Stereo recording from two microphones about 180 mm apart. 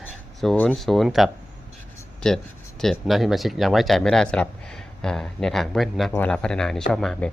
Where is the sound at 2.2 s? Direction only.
5° left (ahead or behind).